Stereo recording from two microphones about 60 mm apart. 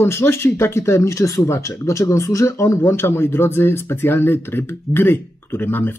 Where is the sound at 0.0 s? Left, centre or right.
Left.